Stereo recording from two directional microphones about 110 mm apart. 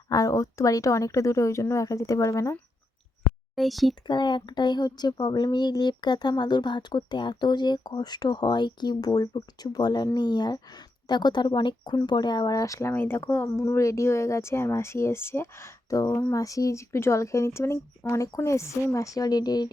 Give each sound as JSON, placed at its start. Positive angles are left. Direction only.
{"t": 0.1, "sound": "speech", "side_deg": 30}
{"t": 3.5, "sound": "speech", "side_deg": 0}
{"t": 4.0, "sound": "speech", "side_deg": 45}